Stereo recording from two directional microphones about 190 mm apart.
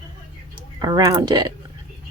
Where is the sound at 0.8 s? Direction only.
20° right (ahead or behind).